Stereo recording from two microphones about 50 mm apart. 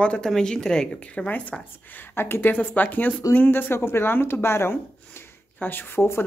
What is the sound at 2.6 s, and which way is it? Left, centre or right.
Speech, left.